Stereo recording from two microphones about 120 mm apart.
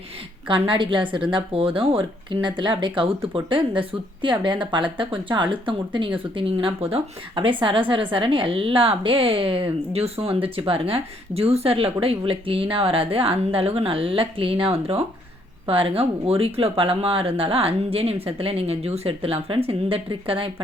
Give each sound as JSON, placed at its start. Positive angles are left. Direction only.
{"t": 0.7, "sound": "a woman's voice", "side_deg": -45}